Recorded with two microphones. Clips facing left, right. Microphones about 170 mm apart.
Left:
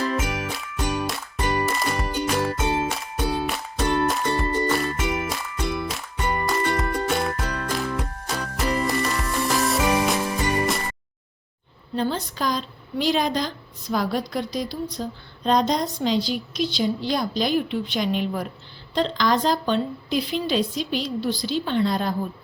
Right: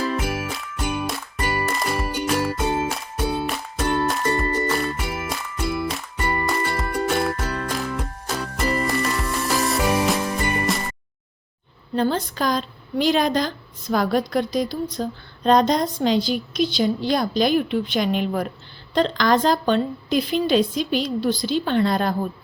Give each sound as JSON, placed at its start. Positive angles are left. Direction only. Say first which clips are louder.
{"t": 0.0, "sound": "music", "louder": "right 1 dB", "side_deg": -5}
{"t": 11.9, "sound": "a woman's voice", "louder": "right 4 dB", "side_deg": -50}